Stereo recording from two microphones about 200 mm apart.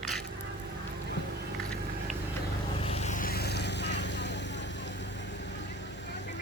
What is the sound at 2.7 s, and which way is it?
Vehicle, 30° left (ahead or behind).